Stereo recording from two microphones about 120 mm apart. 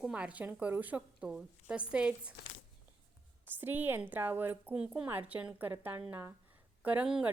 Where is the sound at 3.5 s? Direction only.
15° right (ahead or behind).